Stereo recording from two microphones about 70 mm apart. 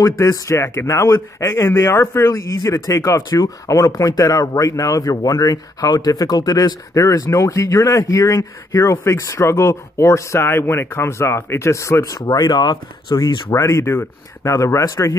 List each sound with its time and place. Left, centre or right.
0.0 s speech: left
12.2 s speech: left
13.5 s speech: left